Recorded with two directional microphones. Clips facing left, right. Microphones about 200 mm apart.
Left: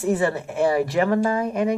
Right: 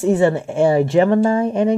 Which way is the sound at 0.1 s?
25° right (ahead or behind).